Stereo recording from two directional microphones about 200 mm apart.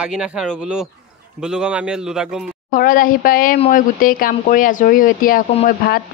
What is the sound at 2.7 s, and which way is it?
Speech, 45° left (ahead or behind).